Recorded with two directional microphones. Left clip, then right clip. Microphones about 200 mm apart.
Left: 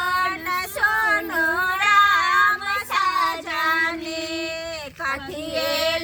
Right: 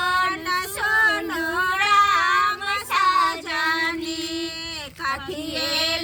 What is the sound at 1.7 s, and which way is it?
Child singing, 10° right (ahead or behind).